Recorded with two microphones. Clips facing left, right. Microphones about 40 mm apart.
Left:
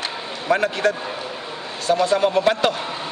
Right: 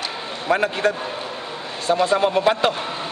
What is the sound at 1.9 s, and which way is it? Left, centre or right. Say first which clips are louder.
Speech: even; right.